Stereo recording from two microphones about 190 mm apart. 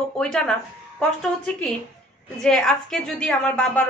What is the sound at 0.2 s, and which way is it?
A woman's voice, 5° left (ahead or behind).